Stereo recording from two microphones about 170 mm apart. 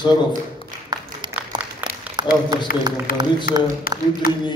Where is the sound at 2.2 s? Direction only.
25° right (ahead or behind).